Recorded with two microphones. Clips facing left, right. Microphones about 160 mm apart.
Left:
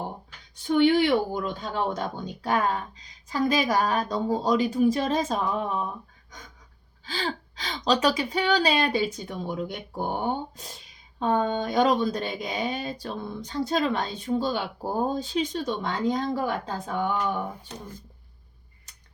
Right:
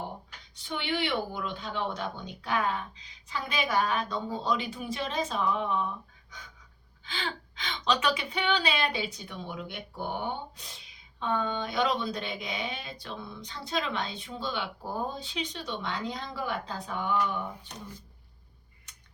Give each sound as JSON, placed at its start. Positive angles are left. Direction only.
{"t": 0.5, "sound": "speech", "side_deg": 45}
{"t": 7.0, "sound": "speech", "side_deg": 40}